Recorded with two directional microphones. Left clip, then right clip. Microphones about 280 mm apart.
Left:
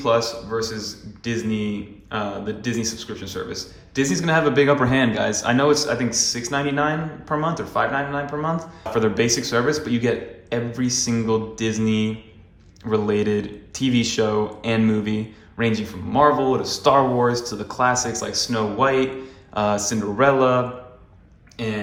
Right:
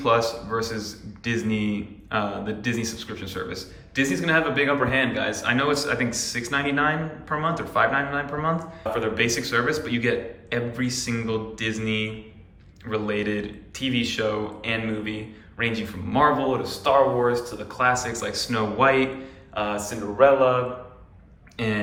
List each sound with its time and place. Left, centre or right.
0.0 s a man's voice: centre
19.5 s speech: left
21.6 s speech: centre